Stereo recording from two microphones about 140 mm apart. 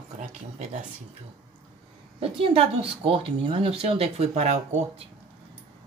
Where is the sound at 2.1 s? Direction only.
40° right (ahead or behind).